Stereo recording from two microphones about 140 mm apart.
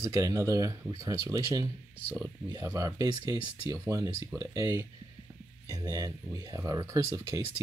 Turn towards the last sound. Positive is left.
turn(degrees=-20)  # may be behind; listen again after turning